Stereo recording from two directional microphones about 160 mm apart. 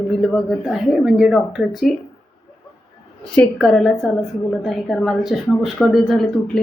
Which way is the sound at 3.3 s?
5° left (ahead or behind).